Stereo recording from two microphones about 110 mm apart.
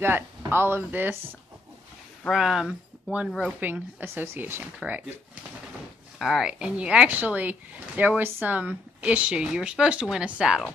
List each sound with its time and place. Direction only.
0.5 s speech: 20° right (ahead or behind)
2.3 s speech: 5° right (ahead or behind)
3.5 s speech: 15° right (ahead or behind)
6.1 s speech: centre (ahead or behind)